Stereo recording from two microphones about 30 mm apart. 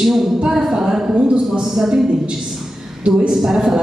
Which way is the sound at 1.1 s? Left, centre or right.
Right.